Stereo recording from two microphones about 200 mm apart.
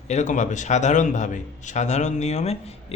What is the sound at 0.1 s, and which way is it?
A man's voice, 35° left (ahead or behind).